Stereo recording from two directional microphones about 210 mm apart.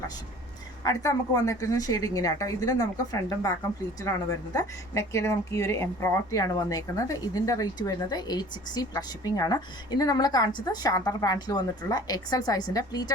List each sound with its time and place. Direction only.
0.9 s speech: 15° left (ahead or behind)
4.5 s speech: 15° left (ahead or behind)